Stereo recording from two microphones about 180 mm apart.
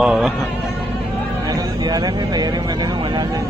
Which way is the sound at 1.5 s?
20° right (ahead or behind).